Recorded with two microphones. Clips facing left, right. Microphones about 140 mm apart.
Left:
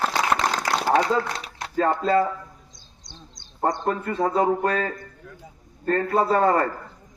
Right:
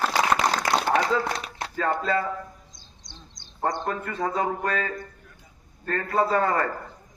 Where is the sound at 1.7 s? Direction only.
35° left (ahead or behind).